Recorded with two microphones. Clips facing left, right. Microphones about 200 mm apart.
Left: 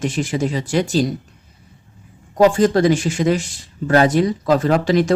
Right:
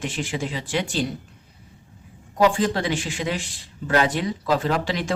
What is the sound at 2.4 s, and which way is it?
Speech, 45° left (ahead or behind).